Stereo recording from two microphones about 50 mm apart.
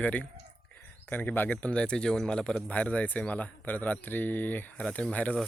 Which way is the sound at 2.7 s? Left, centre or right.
Left.